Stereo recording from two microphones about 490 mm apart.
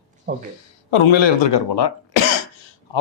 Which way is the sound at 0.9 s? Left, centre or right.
Left.